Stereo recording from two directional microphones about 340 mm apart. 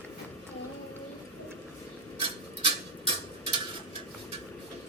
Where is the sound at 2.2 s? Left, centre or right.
Centre.